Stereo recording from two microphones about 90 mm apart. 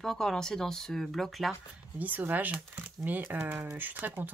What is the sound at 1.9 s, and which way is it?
Speech, 20° right (ahead or behind).